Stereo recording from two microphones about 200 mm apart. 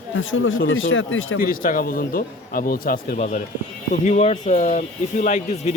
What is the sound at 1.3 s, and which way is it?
Speech, 45° left (ahead or behind).